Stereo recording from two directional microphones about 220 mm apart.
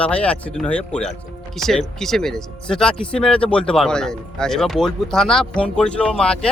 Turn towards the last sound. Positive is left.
turn(degrees=5)  # may be behind; listen again after turning